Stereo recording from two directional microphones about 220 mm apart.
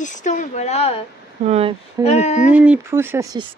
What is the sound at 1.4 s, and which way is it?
Speech, 30° right (ahead or behind).